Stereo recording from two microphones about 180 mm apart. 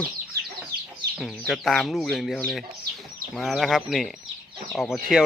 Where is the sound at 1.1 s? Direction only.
Centre (ahead or behind).